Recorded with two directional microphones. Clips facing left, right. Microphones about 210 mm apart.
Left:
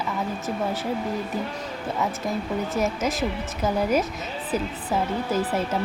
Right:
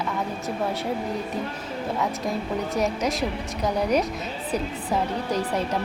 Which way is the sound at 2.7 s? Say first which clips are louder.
Right 1 dB; centre (ahead or behind).